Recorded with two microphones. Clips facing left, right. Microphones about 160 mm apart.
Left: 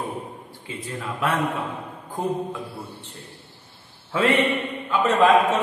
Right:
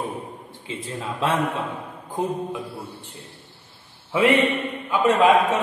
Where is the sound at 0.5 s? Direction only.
25° right (ahead or behind).